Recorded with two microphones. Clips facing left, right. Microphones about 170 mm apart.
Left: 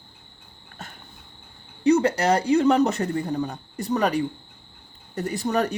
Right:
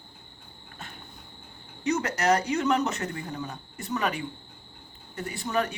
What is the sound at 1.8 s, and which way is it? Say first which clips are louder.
Speech: left 8 dB; 30° left (ahead or behind).